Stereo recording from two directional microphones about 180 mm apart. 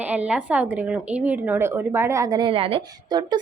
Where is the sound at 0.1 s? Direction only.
5° right (ahead or behind).